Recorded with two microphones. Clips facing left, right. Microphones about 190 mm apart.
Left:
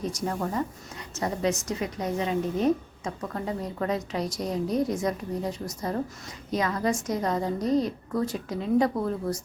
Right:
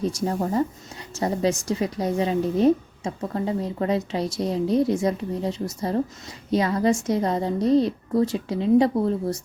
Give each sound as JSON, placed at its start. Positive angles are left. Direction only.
{"t": 0.0, "sound": "speech", "side_deg": -30}